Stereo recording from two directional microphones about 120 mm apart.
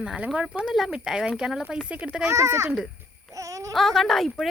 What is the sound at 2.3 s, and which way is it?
Speech, 25° right (ahead or behind).